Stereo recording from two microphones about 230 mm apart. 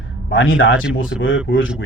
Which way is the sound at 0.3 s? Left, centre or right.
Left.